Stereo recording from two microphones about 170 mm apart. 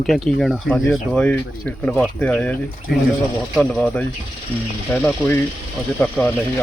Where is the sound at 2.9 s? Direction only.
70° left (ahead or behind).